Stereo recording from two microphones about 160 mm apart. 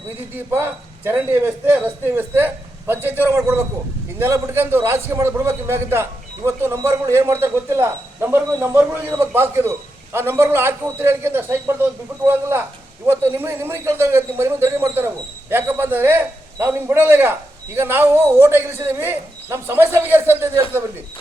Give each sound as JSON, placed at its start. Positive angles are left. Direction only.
{"t": 0.3, "sound": "a man's voice", "side_deg": -15}